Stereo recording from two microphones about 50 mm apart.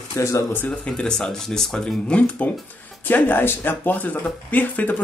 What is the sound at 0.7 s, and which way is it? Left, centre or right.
Speech, centre.